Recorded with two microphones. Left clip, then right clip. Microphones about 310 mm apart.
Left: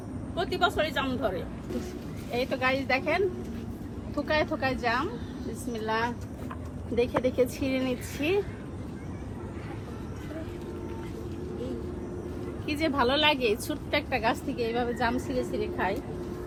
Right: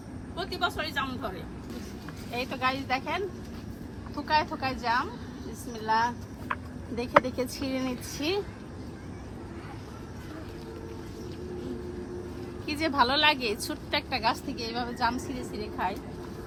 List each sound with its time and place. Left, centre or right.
0.3 s speech: centre
2.3 s a woman's voice: centre
4.3 s a woman's voice: centre
12.6 s a woman's voice: centre